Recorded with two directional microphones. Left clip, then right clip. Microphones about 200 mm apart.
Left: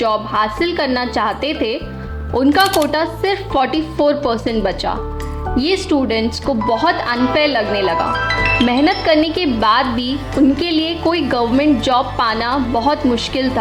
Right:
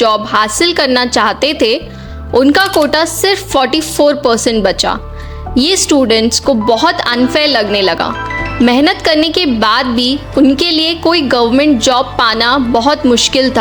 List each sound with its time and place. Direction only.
0.0 s a woman's voice: 40° right (ahead or behind)
2.6 s speech: centre (ahead or behind)
2.9 s a woman's voice: 40° right (ahead or behind)